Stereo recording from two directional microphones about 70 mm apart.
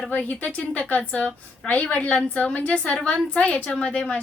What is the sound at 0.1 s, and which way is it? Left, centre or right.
A woman's voice, left.